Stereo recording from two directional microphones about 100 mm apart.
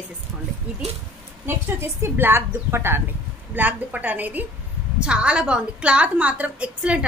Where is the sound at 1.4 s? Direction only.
25° right (ahead or behind).